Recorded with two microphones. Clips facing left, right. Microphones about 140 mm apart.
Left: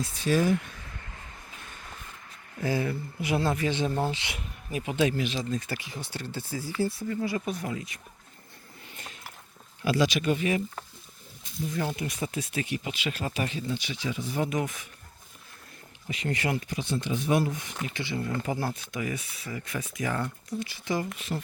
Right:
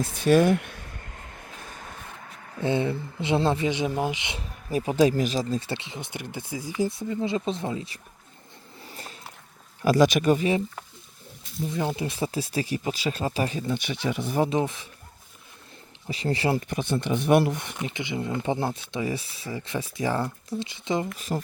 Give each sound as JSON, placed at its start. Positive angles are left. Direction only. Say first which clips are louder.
{"t": 0.0, "sound": "speech", "louder": "right 6 dB", "side_deg": -60}
{"t": 2.6, "sound": "speech", "louder": "right 4 dB", "side_deg": -25}
{"t": 3.7, "sound": "speech", "louder": "right 2 dB", "side_deg": -15}
{"t": 4.4, "sound": "speech", "louder": "right 6 dB", "side_deg": -35}
{"t": 8.9, "sound": "a sound", "louder": "right 4 dB", "side_deg": -35}
{"t": 9.8, "sound": "speech", "louder": "right 6 dB", "side_deg": -45}
{"t": 11.7, "sound": "speech", "louder": "right 3 dB", "side_deg": -25}
{"t": 13.7, "sound": "speech", "louder": "right 4 dB", "side_deg": -55}
{"t": 14.3, "sound": "speech", "louder": "right 5 dB", "side_deg": -30}
{"t": 16.0, "sound": "speech", "louder": "right 4 dB", "side_deg": -30}
{"t": 16.6, "sound": "speech", "louder": "right 4 dB", "side_deg": -60}
{"t": 17.8, "sound": "speech", "louder": "right 2 dB", "side_deg": -20}
{"t": 21.2, "sound": "speech", "louder": "right 4 dB", "side_deg": -40}